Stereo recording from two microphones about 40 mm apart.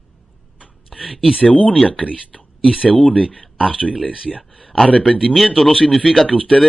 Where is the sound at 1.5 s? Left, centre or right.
Left.